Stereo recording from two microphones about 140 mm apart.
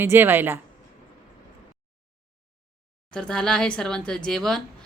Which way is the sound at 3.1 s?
5° left (ahead or behind).